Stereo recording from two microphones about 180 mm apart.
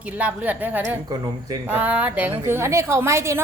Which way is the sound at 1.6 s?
10° right (ahead or behind).